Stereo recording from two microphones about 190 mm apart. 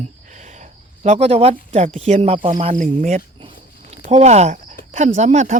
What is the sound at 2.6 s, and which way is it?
Cricket, 35° right (ahead or behind).